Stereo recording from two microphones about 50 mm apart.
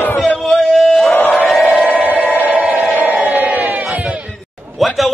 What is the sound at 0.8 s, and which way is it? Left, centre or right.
Battle cry, centre.